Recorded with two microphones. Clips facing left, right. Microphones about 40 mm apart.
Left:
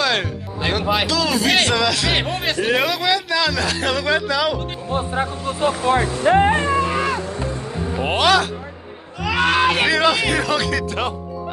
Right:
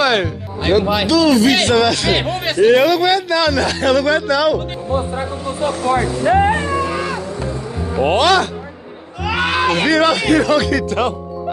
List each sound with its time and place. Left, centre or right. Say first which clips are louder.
0.0 s speech: right 5 dB; centre
4.9 s speech: right 4 dB; left
5.9 s vehicle: right 2 dB; left
7.9 s speech: right 4 dB; centre
9.2 s a sound: even; centre
9.7 s speech: right 3 dB; centre